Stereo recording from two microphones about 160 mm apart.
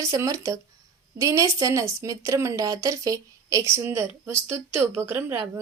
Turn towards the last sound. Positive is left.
turn(degrees=-15)  # may be behind; listen again after turning